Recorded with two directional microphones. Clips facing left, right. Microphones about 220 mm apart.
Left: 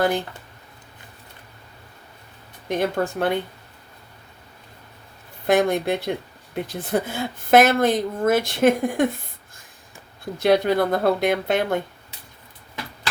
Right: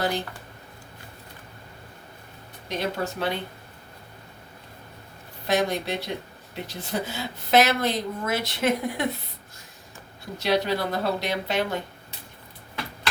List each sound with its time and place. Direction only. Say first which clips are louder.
2.6 s speech: left 6 dB; 50° left (ahead or behind)
5.5 s speech: left 6 dB; 50° left (ahead or behind)
10.3 s speech: left 6 dB; 50° left (ahead or behind)